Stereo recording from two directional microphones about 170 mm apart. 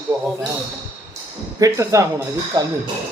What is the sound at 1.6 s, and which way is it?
Speech, 15° right (ahead or behind).